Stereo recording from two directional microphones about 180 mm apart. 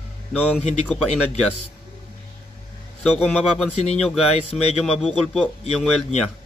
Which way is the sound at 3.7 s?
35° left (ahead or behind).